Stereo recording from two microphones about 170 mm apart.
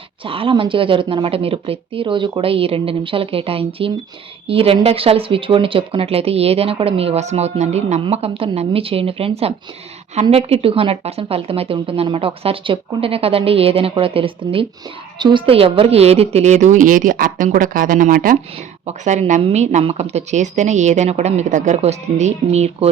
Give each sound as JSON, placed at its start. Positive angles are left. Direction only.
{"t": 0.3, "sound": "a woman's voice", "side_deg": -30}